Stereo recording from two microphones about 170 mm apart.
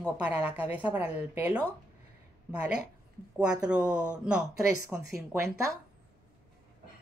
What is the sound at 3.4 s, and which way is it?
A woman's voice, 5° right (ahead or behind).